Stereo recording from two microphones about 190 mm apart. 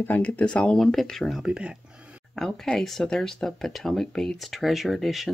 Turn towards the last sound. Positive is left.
turn(degrees=0)  # may be behind; listen again after turning